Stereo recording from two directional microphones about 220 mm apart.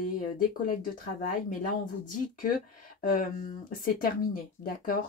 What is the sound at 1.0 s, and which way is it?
Speech, 40° left (ahead or behind).